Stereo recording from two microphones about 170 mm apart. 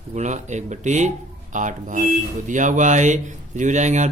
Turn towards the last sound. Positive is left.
turn(degrees=-45)  # may be behind; listen again after turning